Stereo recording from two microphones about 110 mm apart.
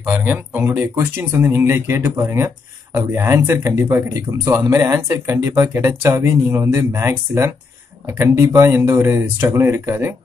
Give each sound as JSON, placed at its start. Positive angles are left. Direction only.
{"t": 0.1, "sound": "speech", "side_deg": -15}